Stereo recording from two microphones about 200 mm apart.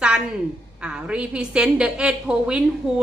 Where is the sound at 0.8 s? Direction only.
5° right (ahead or behind).